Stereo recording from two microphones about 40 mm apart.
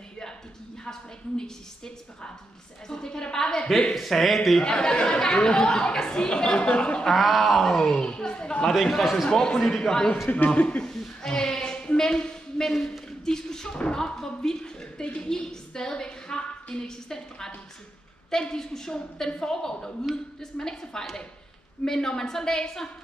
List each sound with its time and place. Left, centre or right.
2.9 s a woman's voice: centre
3.9 s speech: centre
4.6 s speech: centre
7.1 s speech: centre
8.0 s a sound: left
8.8 s speech: centre
9.3 s a woman's voice: centre
9.6 s speech: centre
9.8 s a woman's voice: centre
10.2 s a man's voice: left
10.8 s a sound: centre
14.0 s a woman's voice: centre
16.8 s a woman's voice: centre